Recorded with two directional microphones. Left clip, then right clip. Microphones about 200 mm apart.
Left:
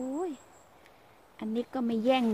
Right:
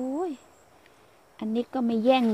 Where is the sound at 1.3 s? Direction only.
25° right (ahead or behind).